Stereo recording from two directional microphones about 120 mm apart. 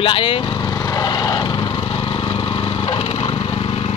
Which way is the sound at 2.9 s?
55° left (ahead or behind).